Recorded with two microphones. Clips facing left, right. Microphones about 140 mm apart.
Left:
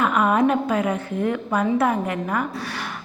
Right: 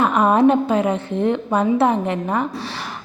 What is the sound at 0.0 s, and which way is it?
A woman's voice, 35° right (ahead or behind).